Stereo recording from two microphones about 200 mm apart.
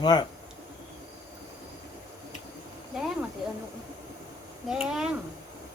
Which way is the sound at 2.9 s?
5° right (ahead or behind).